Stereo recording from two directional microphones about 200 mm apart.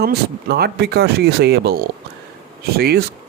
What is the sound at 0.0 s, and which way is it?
Speech, 50° right (ahead or behind).